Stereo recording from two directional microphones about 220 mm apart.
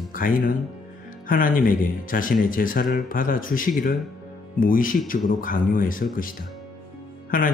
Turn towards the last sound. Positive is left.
turn(degrees=40)  # may be behind; listen again after turning